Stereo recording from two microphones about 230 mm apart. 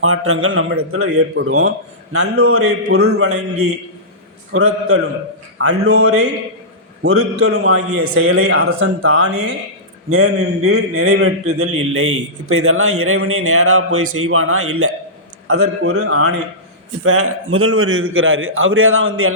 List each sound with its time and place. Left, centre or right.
0.0 s a man's voice: right